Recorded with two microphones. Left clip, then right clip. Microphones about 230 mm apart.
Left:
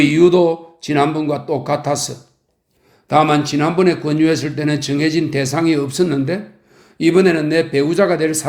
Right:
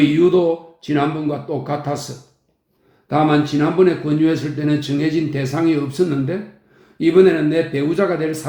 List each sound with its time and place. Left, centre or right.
0.2 s speech: left
3.1 s speech: left